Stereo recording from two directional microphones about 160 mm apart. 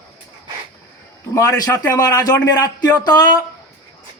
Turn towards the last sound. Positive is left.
turn(degrees=25)  # may be behind; listen again after turning